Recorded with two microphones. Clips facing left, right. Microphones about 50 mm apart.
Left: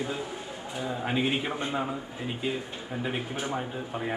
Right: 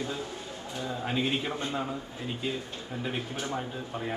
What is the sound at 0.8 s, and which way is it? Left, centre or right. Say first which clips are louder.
A man's voice: left 2 dB; centre.